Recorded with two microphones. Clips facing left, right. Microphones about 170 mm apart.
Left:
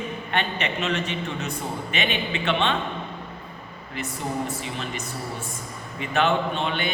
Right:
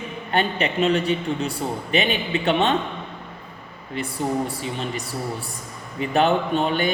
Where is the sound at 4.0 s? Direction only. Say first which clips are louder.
Right 5 dB; 35° right (ahead or behind).